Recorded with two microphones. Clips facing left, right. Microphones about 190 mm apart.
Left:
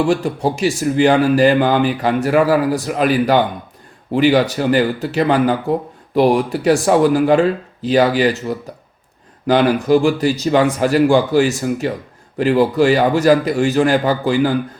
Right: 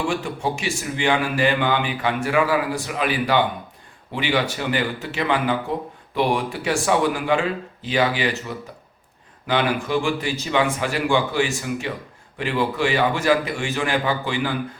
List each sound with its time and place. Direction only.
0.1 s a man's voice: 40° left (ahead or behind)